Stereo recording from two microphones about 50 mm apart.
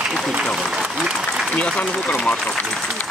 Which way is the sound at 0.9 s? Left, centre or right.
Centre.